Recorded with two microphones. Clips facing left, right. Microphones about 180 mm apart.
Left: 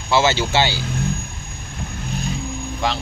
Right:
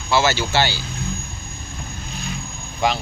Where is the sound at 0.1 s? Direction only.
20° left (ahead or behind).